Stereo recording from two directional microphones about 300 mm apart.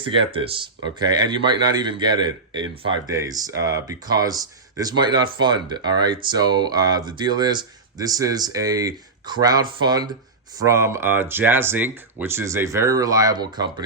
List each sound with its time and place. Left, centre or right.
0.0 s a man's voice: centre